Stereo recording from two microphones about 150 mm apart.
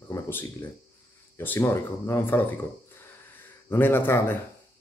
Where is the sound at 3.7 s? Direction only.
15° left (ahead or behind).